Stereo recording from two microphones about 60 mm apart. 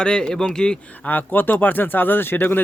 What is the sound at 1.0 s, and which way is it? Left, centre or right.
Speech, left.